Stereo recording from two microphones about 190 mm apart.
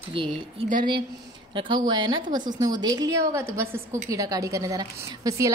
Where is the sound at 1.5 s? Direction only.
25° right (ahead or behind).